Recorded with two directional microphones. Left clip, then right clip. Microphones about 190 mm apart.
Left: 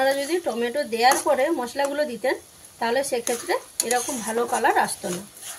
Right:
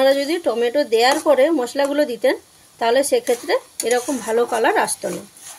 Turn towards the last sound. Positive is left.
turn(degrees=-55)  # may be behind; listen again after turning